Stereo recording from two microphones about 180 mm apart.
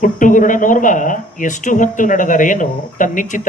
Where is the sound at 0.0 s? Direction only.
45° left (ahead or behind).